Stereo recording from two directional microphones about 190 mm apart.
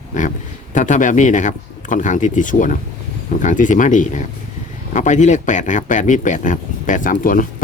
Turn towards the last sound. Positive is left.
turn(degrees=45)  # may be behind; listen again after turning